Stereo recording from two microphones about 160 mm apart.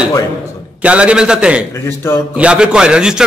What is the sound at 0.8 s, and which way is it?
A man's voice, 5° right (ahead or behind).